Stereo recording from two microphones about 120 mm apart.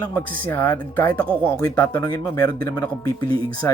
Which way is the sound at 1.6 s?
25° left (ahead or behind).